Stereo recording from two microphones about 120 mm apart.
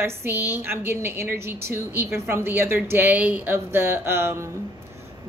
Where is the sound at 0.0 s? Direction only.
20° right (ahead or behind).